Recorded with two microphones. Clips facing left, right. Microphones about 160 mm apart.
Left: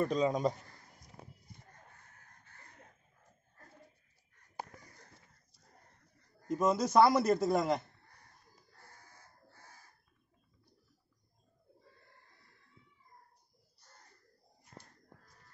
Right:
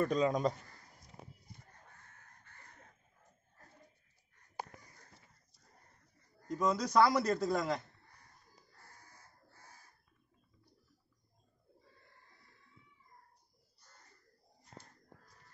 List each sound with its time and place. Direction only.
0.1 s a man's voice: 10° left (ahead or behind)
6.4 s a man's voice: 20° left (ahead or behind)